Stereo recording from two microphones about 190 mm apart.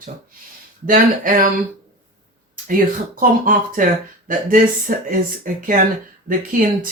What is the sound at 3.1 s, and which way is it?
Speech, 45° right (ahead or behind).